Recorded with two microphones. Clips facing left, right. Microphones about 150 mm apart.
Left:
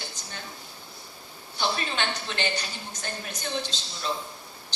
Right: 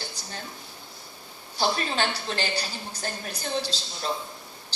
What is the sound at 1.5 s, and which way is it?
A woman's voice, 35° right (ahead or behind).